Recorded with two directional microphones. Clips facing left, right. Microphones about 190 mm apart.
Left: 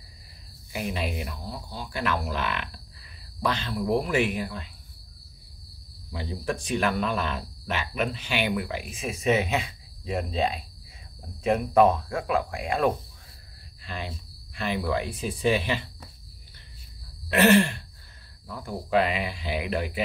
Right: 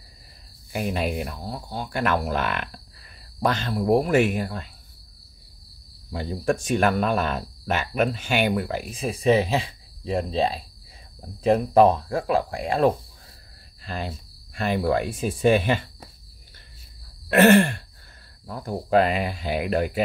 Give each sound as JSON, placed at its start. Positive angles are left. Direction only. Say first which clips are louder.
{"t": 0.7, "sound": "speech", "louder": "right 5 dB", "side_deg": -50}
{"t": 6.1, "sound": "speech", "louder": "right 6 dB", "side_deg": -45}
{"t": 17.3, "sound": "speech", "louder": "right 4 dB", "side_deg": -50}